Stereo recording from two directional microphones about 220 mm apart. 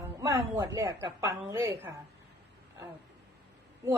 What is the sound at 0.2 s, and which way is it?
Speech, 15° right (ahead or behind).